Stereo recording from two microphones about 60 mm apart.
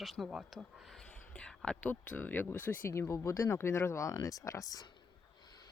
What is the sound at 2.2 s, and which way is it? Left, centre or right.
Speech, left.